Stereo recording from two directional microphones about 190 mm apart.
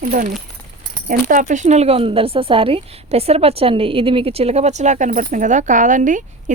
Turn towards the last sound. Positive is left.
turn(degrees=-40)  # may be behind; listen again after turning